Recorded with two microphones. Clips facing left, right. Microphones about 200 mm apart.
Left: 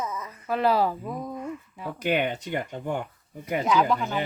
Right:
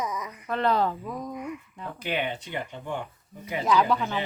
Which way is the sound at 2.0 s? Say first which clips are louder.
Left 5 dB; 45° left (ahead or behind).